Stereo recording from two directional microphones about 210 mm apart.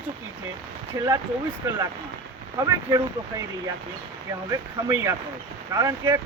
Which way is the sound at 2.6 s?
15° right (ahead or behind).